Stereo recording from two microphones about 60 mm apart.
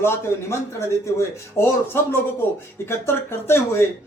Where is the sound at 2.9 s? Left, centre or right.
Left.